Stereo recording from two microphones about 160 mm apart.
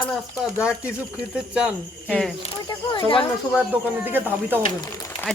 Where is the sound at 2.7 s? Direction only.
25° left (ahead or behind).